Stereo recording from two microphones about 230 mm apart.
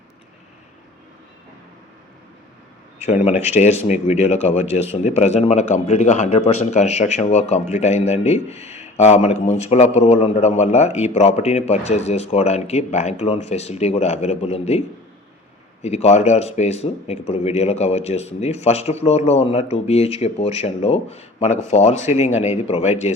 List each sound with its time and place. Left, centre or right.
3.1 s a man's voice: left